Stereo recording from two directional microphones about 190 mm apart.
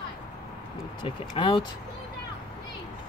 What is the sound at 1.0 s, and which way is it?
Speech, 25° left (ahead or behind).